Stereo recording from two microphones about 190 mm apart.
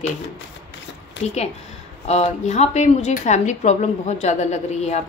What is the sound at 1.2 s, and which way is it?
Speech, 35° left (ahead or behind).